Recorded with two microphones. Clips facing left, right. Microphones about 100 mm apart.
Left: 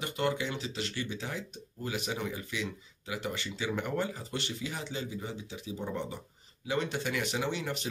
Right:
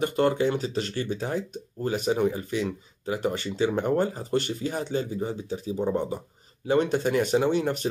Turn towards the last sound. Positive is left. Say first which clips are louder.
# right 10 dB
turn(degrees=-45)  # may be behind; listen again after turning